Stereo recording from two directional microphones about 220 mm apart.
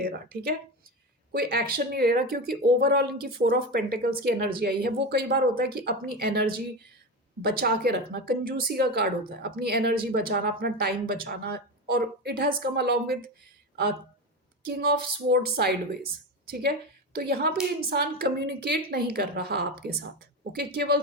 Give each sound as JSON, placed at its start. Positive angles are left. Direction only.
{"t": 0.0, "sound": "a woman's voice", "side_deg": -45}
{"t": 14.8, "sound": "a woman's voice", "side_deg": -45}